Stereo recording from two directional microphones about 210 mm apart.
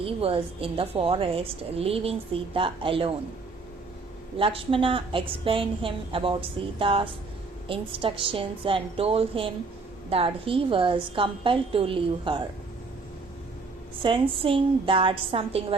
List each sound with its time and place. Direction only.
0.0 s a woman's voice: 25° right (ahead or behind)
4.4 s a woman's voice: 25° right (ahead or behind)
14.0 s a woman's voice: 25° right (ahead or behind)